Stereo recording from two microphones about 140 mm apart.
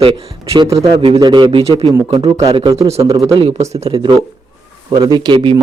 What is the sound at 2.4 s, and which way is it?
Speech, 45° right (ahead or behind).